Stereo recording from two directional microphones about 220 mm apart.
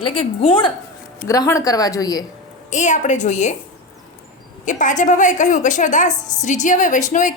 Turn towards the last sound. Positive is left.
turn(degrees=35)  # may be behind; listen again after turning